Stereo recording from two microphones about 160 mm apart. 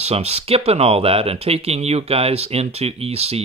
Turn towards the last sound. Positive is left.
turn(degrees=-40)  # may be behind; listen again after turning